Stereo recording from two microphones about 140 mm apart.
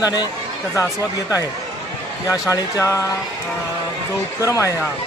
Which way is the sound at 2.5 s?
20° left (ahead or behind).